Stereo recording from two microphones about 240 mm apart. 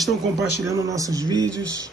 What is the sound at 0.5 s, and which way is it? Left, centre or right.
Speech, centre.